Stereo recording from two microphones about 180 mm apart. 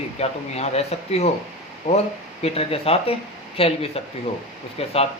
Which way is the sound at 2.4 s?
35° left (ahead or behind).